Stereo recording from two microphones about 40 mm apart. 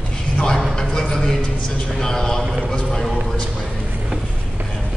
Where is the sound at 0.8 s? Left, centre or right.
Centre.